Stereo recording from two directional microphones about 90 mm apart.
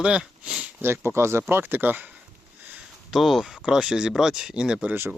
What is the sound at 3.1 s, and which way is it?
Speech, centre (ahead or behind).